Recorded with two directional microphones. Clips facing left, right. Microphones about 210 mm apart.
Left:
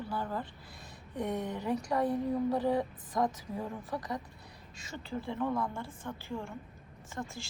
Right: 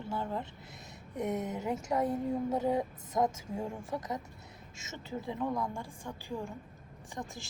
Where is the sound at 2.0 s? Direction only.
Centre (ahead or behind).